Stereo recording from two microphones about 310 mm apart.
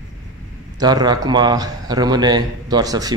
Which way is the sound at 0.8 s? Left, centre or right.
Centre.